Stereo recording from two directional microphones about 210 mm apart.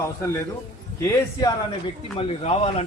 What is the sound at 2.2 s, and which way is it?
Speech, 30° left (ahead or behind).